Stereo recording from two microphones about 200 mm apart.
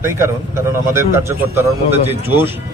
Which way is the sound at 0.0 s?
15° right (ahead or behind).